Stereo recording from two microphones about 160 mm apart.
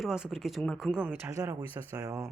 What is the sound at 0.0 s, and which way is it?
Speech, centre (ahead or behind).